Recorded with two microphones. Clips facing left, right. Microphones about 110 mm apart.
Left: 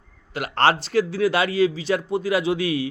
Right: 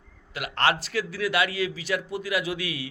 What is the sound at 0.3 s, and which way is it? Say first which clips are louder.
A man's voice: left 5 dB; 35° left (ahead or behind).